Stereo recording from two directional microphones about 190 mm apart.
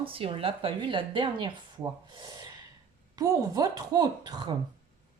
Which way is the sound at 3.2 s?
20° right (ahead or behind).